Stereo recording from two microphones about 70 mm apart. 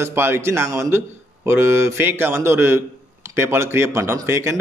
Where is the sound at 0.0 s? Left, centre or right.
Right.